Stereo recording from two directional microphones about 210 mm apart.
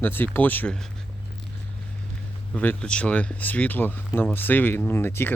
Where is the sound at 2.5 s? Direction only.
5° left (ahead or behind).